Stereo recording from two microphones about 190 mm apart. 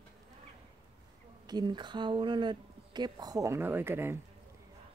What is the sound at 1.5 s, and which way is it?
Speech, 20° right (ahead or behind).